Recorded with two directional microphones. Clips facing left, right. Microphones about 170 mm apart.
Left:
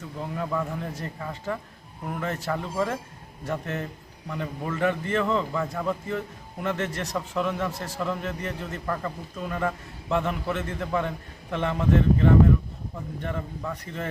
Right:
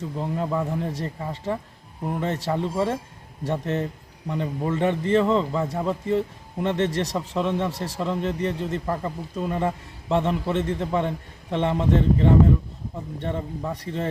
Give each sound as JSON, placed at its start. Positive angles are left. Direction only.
{"t": 0.3, "sound": "speech", "side_deg": -20}